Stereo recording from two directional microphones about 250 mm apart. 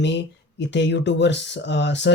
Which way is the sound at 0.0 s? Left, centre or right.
Left.